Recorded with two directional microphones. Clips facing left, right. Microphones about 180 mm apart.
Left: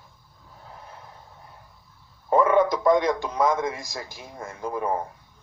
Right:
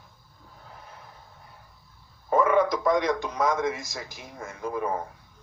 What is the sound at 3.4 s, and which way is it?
Speech, 30° left (ahead or behind).